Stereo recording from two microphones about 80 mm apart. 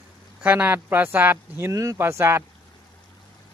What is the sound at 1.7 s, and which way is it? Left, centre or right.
Speech, right.